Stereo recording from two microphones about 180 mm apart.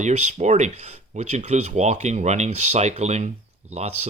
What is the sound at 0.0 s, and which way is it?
Speech, 40° right (ahead or behind).